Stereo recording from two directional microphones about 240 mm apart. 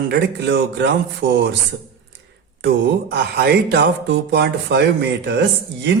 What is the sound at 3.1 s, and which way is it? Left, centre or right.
Speech, right.